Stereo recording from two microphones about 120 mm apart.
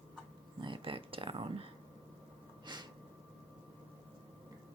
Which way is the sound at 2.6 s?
35° right (ahead or behind).